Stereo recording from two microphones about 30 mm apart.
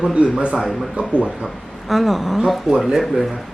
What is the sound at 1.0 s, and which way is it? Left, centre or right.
Speech, right.